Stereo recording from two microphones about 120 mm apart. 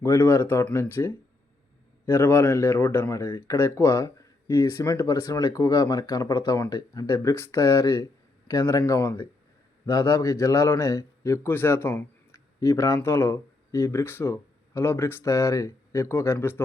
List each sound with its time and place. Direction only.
0.0 s speech: 25° left (ahead or behind)